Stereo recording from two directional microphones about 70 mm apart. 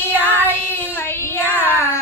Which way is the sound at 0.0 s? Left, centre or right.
Left.